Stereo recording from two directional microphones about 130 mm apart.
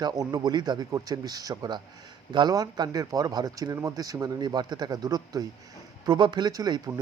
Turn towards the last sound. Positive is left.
turn(degrees=-30)  # may be behind; listen again after turning